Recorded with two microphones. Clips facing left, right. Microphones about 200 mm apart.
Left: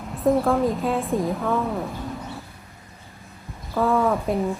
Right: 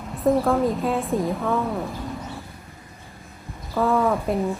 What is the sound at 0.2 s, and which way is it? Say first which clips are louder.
A woman's voice: even; centre (ahead or behind).